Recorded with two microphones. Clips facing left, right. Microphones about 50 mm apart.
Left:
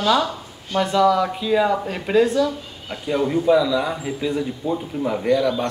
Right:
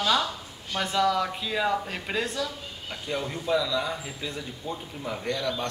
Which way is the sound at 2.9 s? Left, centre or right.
Centre.